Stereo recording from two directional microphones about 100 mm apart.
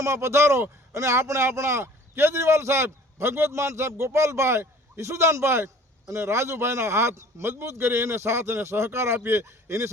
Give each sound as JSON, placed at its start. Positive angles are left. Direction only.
{"t": 0.0, "sound": "a man's voice", "side_deg": -30}